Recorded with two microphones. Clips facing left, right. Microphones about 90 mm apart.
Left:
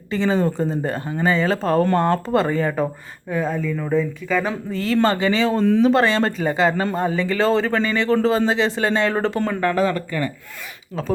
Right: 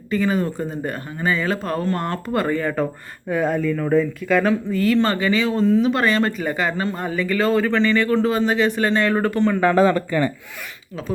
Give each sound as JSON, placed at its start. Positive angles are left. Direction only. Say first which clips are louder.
{"t": 0.1, "sound": "speech", "louder": "left 1 dB", "side_deg": 25}
{"t": 3.2, "sound": "speech", "louder": "right 3 dB", "side_deg": -5}
{"t": 4.7, "sound": "speech", "louder": "left 3 dB", "side_deg": 25}
{"t": 9.7, "sound": "speech", "louder": "right 4 dB", "side_deg": -30}